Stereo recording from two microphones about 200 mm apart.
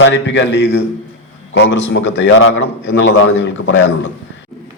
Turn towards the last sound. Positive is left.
turn(degrees=65)  # may be behind; listen again after turning